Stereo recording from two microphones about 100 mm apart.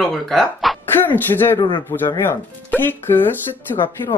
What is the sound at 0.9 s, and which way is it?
Speech, 20° left (ahead or behind).